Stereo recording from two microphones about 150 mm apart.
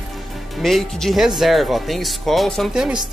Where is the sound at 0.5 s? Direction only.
Centre (ahead or behind).